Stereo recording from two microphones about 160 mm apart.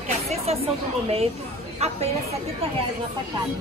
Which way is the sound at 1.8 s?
40° right (ahead or behind).